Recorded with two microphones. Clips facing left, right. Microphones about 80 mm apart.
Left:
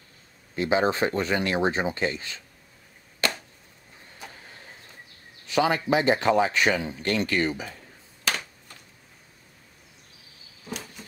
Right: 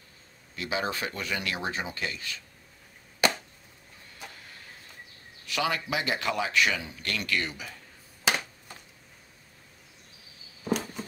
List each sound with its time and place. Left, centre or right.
0.6 s speech: left
3.2 s chop: centre
5.5 s speech: left